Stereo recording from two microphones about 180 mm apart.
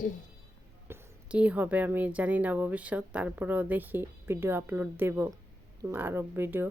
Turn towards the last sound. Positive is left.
turn(degrees=-10)  # may be behind; listen again after turning